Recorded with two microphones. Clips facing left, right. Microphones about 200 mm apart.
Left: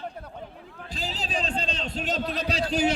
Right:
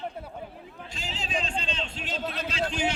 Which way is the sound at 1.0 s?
35° left (ahead or behind).